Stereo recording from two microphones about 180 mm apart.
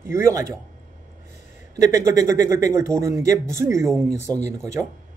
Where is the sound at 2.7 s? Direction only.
15° right (ahead or behind).